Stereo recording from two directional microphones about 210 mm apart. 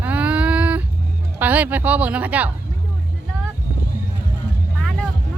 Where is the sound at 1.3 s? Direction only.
10° right (ahead or behind).